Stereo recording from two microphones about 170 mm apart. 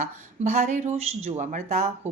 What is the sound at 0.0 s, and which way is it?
Speech, 45° right (ahead or behind).